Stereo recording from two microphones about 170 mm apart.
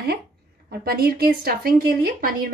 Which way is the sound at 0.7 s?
65° right (ahead or behind).